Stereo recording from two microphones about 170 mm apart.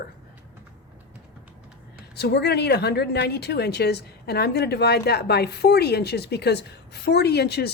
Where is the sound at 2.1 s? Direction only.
75° left (ahead or behind).